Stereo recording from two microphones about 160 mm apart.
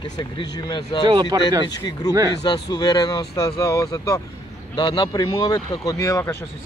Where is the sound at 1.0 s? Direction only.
30° right (ahead or behind).